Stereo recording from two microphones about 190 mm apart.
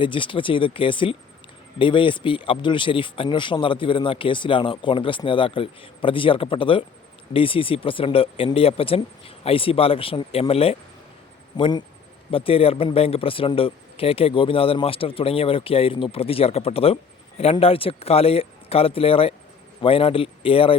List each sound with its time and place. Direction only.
0.0 s speech: 25° left (ahead or behind)